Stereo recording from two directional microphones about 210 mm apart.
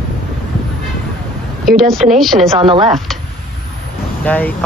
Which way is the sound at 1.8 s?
Centre (ahead or behind).